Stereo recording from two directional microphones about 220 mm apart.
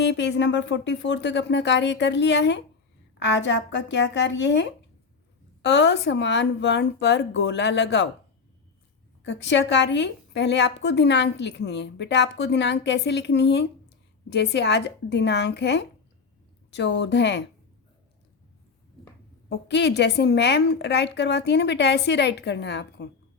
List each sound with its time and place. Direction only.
0.0 s a woman's voice: 55° left (ahead or behind)
9.2 s a woman's voice: 55° left (ahead or behind)
19.5 s a woman's voice: 50° left (ahead or behind)